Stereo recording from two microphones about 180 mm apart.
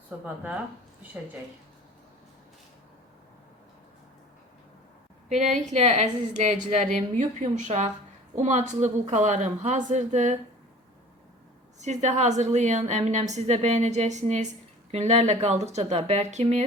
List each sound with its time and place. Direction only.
0.1 s speech: 5° right (ahead or behind)
5.7 s a woman's voice: 40° right (ahead or behind)
11.8 s a woman's voice: 40° right (ahead or behind)